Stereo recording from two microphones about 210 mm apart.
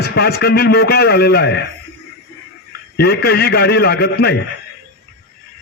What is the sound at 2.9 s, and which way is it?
A man's voice, 50° left (ahead or behind).